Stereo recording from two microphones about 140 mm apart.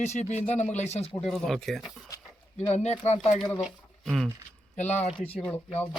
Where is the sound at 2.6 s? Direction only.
50° left (ahead or behind).